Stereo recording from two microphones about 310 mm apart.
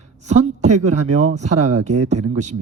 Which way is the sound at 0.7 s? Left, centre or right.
Right.